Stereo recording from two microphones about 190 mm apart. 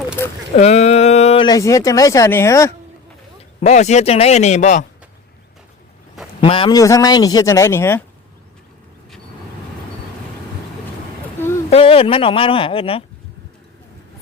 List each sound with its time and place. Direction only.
0.2 s a sound: 15° left (ahead or behind)
0.5 s speech: 35° left (ahead or behind); by 2.7 s 15° left (ahead or behind)
3.6 s speech: 35° left (ahead or behind)
6.4 s a man's voice: 30° left (ahead or behind); by 8.0 s 10° left (ahead or behind)
11.7 s a man's voice: 30° left (ahead or behind)